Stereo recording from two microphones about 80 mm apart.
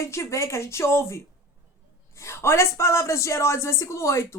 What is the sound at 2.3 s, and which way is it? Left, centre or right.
Speech, left.